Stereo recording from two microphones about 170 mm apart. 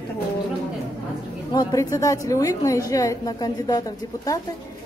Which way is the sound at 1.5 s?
20° left (ahead or behind).